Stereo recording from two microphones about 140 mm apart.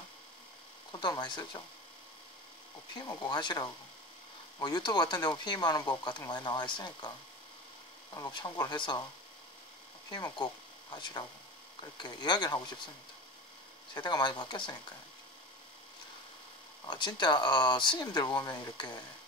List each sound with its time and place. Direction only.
0.9 s speech: 30° left (ahead or behind)
2.9 s speech: 30° left (ahead or behind)
8.1 s speech: 30° left (ahead or behind)
10.0 s speech: 25° left (ahead or behind)
13.9 s speech: 30° left (ahead or behind)
16.8 s speech: 30° left (ahead or behind)